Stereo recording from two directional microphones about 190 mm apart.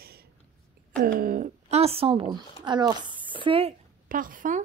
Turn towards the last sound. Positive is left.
turn(degrees=-45)  # may be behind; listen again after turning